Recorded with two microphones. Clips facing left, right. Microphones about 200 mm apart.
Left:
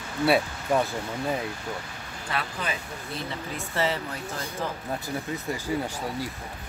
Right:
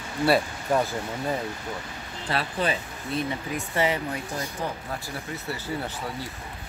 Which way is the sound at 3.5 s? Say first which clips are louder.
Right 2 dB; 15° right (ahead or behind).